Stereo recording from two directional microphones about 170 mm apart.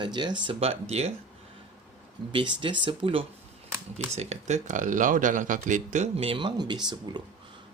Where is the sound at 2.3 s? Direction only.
30° right (ahead or behind).